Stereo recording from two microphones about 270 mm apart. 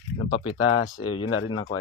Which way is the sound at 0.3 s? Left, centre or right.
Left.